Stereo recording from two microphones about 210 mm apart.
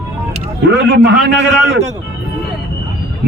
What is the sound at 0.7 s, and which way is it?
Speech, 55° right (ahead or behind).